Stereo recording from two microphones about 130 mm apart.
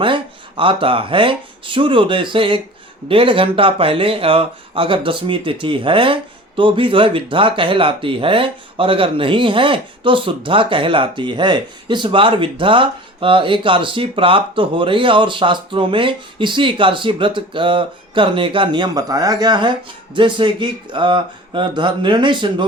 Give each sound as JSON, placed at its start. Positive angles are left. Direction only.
{"t": 0.0, "sound": "speech", "side_deg": -40}